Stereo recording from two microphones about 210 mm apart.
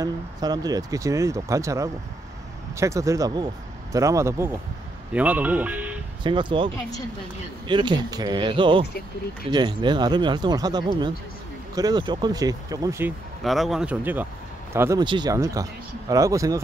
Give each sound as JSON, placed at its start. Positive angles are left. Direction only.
{"t": 0.0, "sound": "speech", "side_deg": -20}
{"t": 6.2, "sound": "speech", "side_deg": -25}
{"t": 13.4, "sound": "speech", "side_deg": 0}